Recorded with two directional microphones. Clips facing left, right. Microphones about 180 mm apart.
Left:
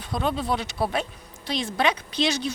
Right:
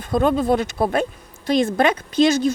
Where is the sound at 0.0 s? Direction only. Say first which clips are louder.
Right 9 dB; 50° right (ahead or behind).